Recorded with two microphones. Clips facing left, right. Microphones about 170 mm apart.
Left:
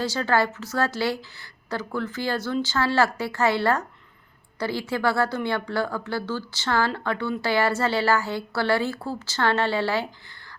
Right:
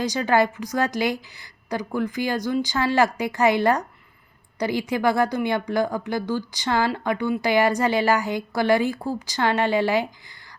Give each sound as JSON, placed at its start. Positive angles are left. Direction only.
{"t": 0.0, "sound": "speech", "side_deg": -15}